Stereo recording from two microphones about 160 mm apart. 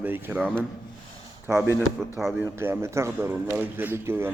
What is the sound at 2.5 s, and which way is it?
Speech, 15° right (ahead or behind).